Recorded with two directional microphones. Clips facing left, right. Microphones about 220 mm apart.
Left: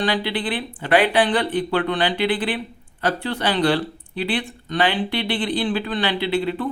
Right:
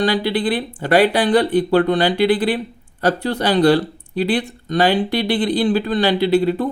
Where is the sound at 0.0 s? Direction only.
40° right (ahead or behind).